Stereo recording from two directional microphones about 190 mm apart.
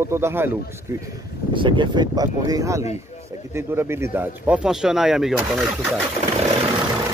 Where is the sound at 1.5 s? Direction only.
25° right (ahead or behind); by 6.0 s centre (ahead or behind).